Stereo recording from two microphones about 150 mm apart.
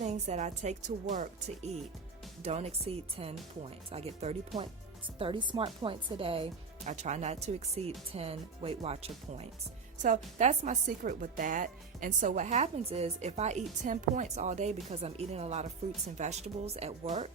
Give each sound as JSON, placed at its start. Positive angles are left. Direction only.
{"t": 0.0, "sound": "speech", "side_deg": -50}
{"t": 6.8, "sound": "speech", "side_deg": -50}